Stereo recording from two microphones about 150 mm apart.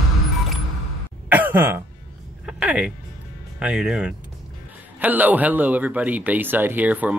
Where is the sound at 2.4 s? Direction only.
10° right (ahead or behind).